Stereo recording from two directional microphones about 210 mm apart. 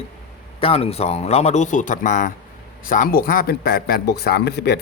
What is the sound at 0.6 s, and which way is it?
Speech, 30° left (ahead or behind).